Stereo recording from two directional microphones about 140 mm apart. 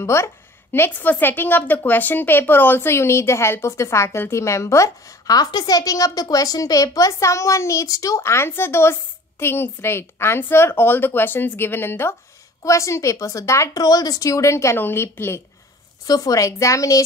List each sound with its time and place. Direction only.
0.0 s a woman's voice: 20° left (ahead or behind)